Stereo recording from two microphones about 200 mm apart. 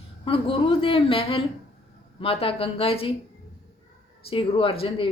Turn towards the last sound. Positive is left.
turn(degrees=25)  # may be behind; listen again after turning